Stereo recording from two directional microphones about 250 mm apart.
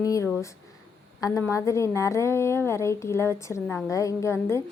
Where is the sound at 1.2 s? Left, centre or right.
Centre.